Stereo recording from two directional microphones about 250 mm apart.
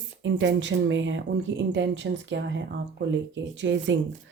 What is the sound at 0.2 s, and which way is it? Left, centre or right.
Speech, right.